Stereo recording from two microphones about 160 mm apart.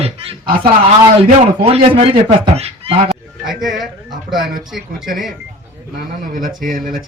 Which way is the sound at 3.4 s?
Centre (ahead or behind).